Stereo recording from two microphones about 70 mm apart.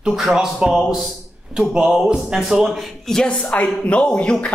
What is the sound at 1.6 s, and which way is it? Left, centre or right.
Speech, centre.